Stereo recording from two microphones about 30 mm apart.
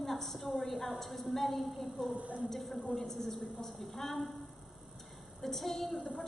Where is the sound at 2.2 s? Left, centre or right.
Right.